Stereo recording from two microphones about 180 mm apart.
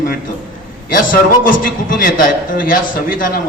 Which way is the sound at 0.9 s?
50° left (ahead or behind).